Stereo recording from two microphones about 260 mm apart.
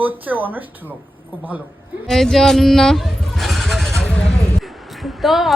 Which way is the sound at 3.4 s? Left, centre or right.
Centre.